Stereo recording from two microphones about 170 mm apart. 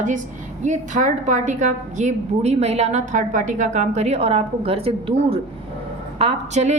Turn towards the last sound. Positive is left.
turn(degrees=-40)  # may be behind; listen again after turning